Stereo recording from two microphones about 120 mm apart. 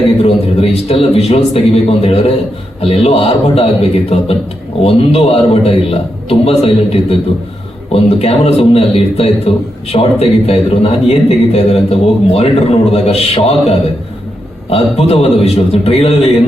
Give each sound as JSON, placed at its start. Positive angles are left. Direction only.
{"t": 0.3, "sound": "a man's voice", "side_deg": 55}